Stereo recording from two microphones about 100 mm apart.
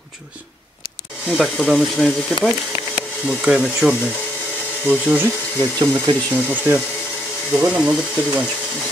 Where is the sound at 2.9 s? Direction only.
10° right (ahead or behind).